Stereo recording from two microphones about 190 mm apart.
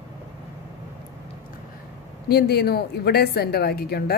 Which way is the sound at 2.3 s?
55° left (ahead or behind).